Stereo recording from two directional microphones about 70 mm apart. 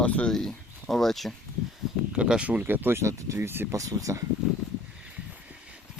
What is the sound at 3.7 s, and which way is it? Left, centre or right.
Speech, right.